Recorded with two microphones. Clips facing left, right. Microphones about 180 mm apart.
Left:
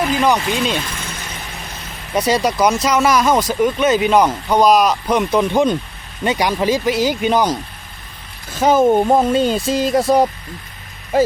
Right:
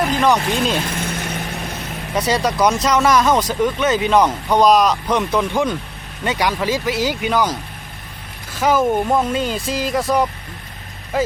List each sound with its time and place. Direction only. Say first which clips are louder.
0.0 s speech: even; centre (ahead or behind)
2.1 s speech: left 2 dB; 15° left (ahead or behind)
8.5 s speech: left 4 dB; 25° left (ahead or behind)